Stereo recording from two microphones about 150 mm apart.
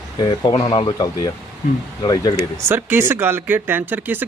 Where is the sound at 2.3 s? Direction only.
15° right (ahead or behind).